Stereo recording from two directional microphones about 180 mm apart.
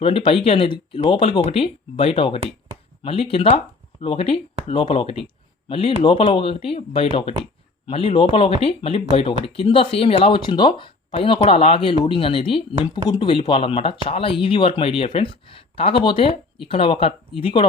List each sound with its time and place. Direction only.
0.0 s speech: 30° left (ahead or behind)